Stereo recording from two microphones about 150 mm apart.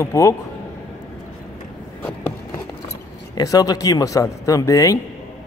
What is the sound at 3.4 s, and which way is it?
A man's voice, 25° left (ahead or behind).